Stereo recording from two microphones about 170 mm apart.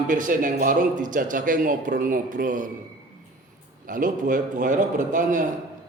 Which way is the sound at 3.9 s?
50° right (ahead or behind).